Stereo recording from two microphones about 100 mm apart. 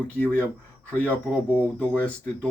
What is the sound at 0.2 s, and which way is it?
Speech, 15° left (ahead or behind).